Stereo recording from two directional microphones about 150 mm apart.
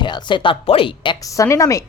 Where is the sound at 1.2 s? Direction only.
20° left (ahead or behind).